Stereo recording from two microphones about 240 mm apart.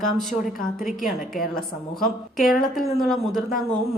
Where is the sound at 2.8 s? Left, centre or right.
Centre.